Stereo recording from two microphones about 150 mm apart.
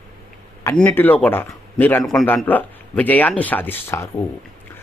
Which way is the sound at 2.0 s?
Centre (ahead or behind).